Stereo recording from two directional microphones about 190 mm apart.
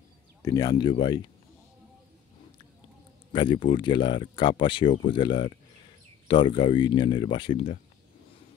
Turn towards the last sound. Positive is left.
turn(degrees=30)  # may be behind; listen again after turning